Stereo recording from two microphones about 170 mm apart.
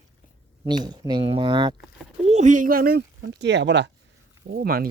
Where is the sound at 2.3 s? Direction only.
45° right (ahead or behind); by 3.9 s 90° right.